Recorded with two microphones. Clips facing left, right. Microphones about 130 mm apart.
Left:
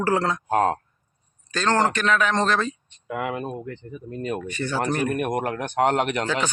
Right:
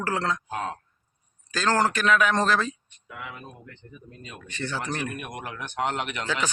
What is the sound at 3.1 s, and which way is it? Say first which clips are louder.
Speech: left 13 dB; 75° left (ahead or behind).